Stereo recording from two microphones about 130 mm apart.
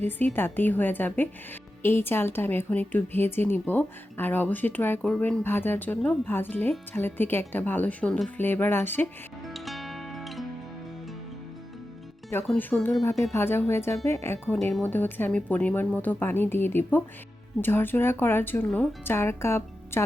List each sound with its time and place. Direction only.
0.2 s speech: 15° left (ahead or behind)
9.5 s music: centre (ahead or behind)
12.5 s speech: 15° left (ahead or behind)
14.6 s a woman's voice: 5° left (ahead or behind)
14.8 s speech: 15° left (ahead or behind)